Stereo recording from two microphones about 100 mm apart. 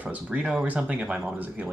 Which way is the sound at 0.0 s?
15° right (ahead or behind).